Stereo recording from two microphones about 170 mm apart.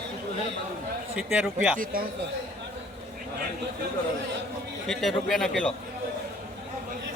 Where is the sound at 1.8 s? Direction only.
55° right (ahead or behind).